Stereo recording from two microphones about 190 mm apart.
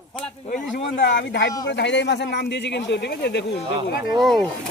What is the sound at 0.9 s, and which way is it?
Speech, 60° left (ahead or behind).